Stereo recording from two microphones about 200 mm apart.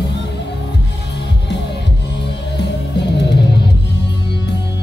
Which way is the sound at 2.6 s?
60° left (ahead or behind).